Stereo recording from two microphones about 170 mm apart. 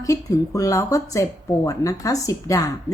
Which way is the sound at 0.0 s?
20° left (ahead or behind).